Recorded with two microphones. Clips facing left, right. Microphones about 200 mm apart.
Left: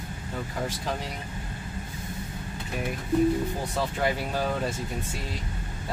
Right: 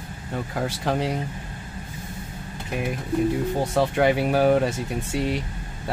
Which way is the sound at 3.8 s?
75° right (ahead or behind).